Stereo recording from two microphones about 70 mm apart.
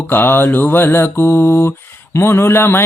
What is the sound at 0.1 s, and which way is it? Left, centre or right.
Mantra, left.